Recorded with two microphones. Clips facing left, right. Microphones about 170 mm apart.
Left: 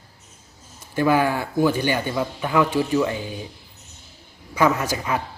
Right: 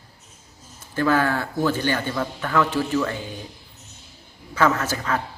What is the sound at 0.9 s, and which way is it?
Speech, 15° left (ahead or behind).